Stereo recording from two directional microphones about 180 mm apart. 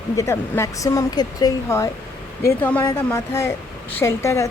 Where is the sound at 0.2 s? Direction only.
15° left (ahead or behind).